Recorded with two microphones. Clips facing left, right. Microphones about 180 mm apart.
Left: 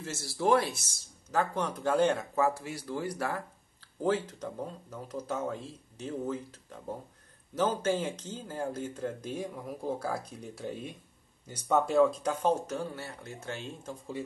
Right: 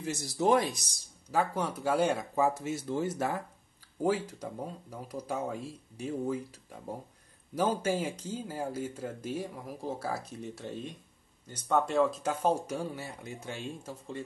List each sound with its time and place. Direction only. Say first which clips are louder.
0.0 s speech: right 1 dB; 15° right (ahead or behind)